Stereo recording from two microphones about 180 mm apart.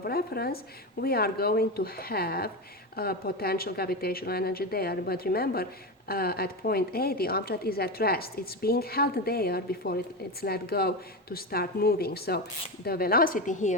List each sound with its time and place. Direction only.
0.0 s a woman's voice: 60° left (ahead or behind); by 13.7 s 45° left (ahead or behind)